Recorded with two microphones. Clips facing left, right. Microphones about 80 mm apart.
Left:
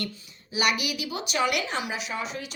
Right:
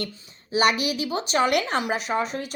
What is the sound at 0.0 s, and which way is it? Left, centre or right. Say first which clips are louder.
A woman's voice: right 2 dB; right.